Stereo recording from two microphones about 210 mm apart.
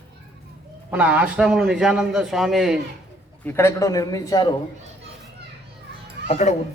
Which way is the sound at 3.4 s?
10° left (ahead or behind).